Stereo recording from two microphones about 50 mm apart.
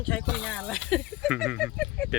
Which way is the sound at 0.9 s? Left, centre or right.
Centre.